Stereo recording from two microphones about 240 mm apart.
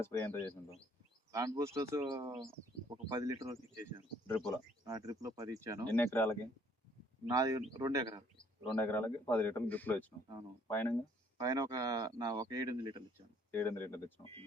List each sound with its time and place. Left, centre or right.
0.0 s a man's voice: centre
1.3 s speech: centre
4.3 s a man's voice: centre
4.9 s speech: centre
5.9 s a man's voice: centre
7.3 s speech: centre
8.6 s a man's voice: centre
11.3 s speech: centre
13.5 s a man's voice: centre